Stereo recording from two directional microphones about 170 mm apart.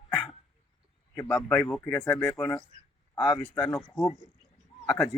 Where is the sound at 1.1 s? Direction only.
10° left (ahead or behind).